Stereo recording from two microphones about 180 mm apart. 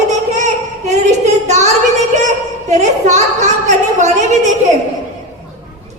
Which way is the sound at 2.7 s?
40° right (ahead or behind).